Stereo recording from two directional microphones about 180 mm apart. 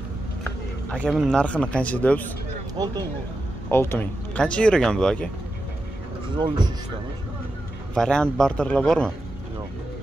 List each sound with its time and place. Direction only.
0.4 s a sound: 5° left (ahead or behind)
1.3 s speech: 5° left (ahead or behind)
2.8 s a man's voice: 25° right (ahead or behind)
3.7 s speech: 10° left (ahead or behind)
6.3 s a man's voice: 25° right (ahead or behind)
7.9 s speech: 5° left (ahead or behind)